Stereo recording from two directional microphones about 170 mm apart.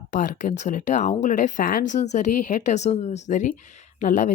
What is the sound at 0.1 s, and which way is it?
A woman's voice, 50° left (ahead or behind).